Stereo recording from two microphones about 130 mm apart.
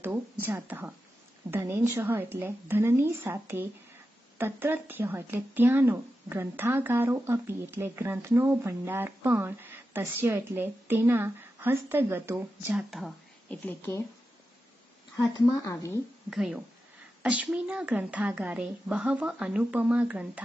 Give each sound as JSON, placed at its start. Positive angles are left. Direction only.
{"t": 0.0, "sound": "a woman's voice", "side_deg": -15}
{"t": 12.7, "sound": "speech", "side_deg": 0}
{"t": 13.5, "sound": "a woman's voice", "side_deg": 15}
{"t": 15.2, "sound": "speech", "side_deg": 25}
{"t": 16.3, "sound": "speech", "side_deg": -5}